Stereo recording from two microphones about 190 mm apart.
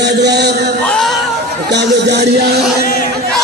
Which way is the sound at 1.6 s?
65° right (ahead or behind).